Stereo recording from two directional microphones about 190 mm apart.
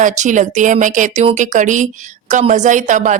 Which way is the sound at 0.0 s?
40° right (ahead or behind).